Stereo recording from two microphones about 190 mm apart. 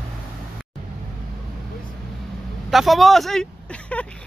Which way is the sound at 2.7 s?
Centre (ahead or behind).